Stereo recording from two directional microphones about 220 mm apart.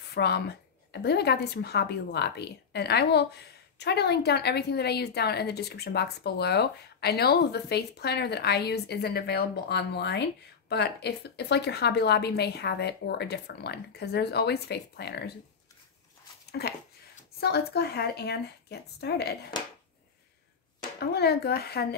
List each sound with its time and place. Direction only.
0.1 s a woman's voice: 50° left (ahead or behind)
16.4 s a sound: 45° left (ahead or behind)
17.4 s a woman's voice: 45° left (ahead or behind)
21.0 s a woman's voice: 45° left (ahead or behind)